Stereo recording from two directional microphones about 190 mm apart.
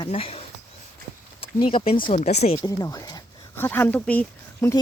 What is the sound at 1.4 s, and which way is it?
Speech, 30° left (ahead or behind).